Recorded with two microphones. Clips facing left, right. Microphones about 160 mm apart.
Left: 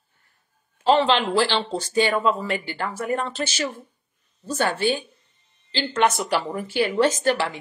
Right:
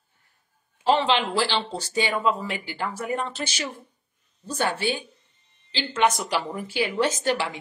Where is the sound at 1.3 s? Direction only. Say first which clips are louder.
Left 4 dB; 10° right (ahead or behind).